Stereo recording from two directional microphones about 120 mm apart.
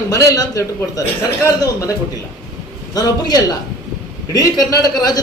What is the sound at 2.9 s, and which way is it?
A man's voice, 30° left (ahead or behind).